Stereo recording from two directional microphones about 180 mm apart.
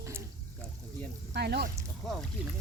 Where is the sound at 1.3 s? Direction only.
65° right (ahead or behind).